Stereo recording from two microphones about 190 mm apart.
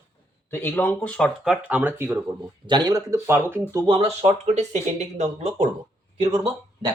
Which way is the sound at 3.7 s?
20° right (ahead or behind).